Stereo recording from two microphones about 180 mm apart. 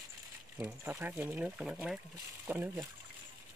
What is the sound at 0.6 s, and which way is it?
Speech, 15° right (ahead or behind).